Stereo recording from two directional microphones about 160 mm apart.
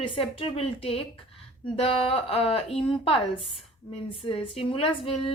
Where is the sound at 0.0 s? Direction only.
35° left (ahead or behind).